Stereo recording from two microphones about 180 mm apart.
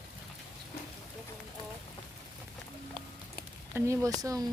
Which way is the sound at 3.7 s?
15° right (ahead or behind).